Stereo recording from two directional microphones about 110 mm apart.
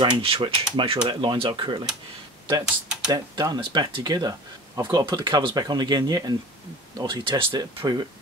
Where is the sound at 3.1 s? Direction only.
35° right (ahead or behind).